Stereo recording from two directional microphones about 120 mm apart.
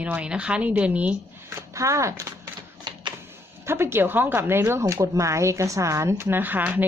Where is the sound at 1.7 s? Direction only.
25° right (ahead or behind).